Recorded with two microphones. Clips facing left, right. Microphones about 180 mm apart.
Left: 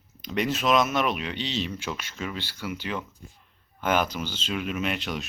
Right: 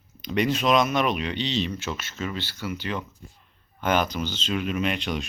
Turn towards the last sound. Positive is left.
turn(degrees=5)  # may be behind; listen again after turning